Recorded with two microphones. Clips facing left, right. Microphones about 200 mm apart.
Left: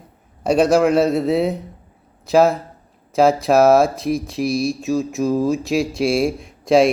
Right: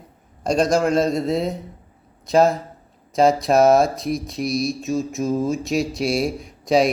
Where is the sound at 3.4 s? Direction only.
5° left (ahead or behind).